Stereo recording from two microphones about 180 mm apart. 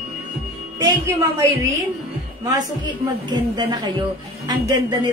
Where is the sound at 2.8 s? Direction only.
25° right (ahead or behind).